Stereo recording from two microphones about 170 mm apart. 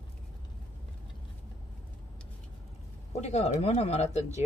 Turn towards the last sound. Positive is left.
turn(degrees=40)  # may be behind; listen again after turning